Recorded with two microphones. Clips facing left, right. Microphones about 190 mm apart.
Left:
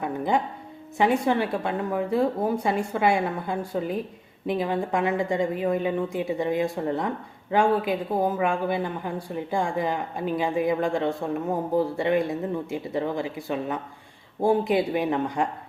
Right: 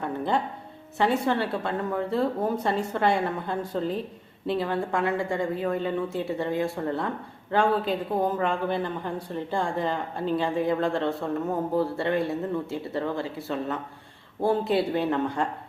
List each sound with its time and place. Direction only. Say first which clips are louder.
0.0 s a woman's voice: left 2 dB; 15° left (ahead or behind)